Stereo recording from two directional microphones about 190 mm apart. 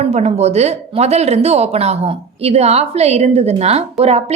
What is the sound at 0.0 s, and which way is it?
A woman's voice, 35° right (ahead or behind).